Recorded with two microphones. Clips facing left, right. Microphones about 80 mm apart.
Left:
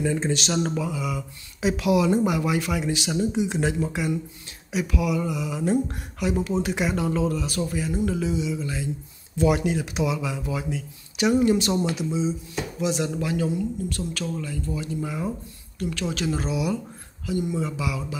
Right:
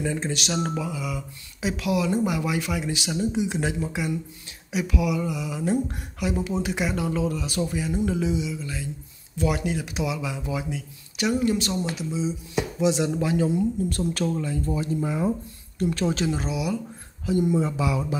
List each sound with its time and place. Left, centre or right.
0.0 s speech: centre
8.5 s speech: centre
11.2 s speech: centre
12.5 s speech: centre
13.8 s speech: right
14.4 s speech: right
15.8 s speech: right
16.3 s speech: centre
17.6 s speech: right